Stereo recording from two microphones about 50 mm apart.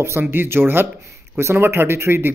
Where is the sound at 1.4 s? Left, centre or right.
Right.